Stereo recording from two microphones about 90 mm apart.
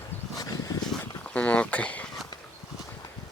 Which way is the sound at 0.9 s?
15° left (ahead or behind).